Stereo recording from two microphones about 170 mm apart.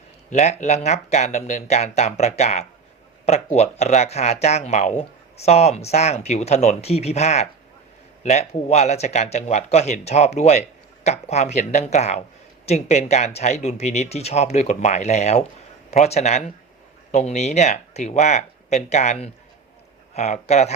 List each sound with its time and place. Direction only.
0.3 s speech: 45° left (ahead or behind)
20.1 s speech: 40° left (ahead or behind)